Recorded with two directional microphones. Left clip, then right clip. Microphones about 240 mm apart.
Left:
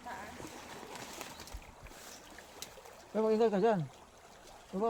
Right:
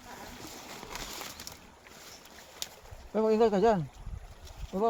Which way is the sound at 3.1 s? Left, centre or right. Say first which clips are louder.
Right 4 dB; right.